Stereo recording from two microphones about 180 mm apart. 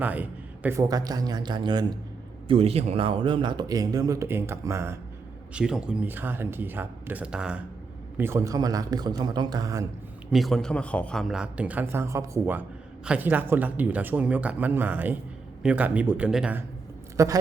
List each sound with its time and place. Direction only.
0.0 s speech: 10° right (ahead or behind)
10.3 s a man's voice: centre (ahead or behind)
17.2 s speech: 15° right (ahead or behind)